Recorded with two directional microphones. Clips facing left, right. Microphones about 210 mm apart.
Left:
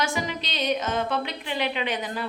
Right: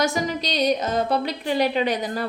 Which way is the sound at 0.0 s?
40° right (ahead or behind).